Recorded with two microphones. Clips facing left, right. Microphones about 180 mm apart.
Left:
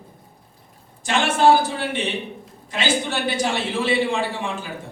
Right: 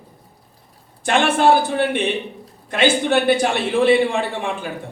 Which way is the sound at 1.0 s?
60° right (ahead or behind).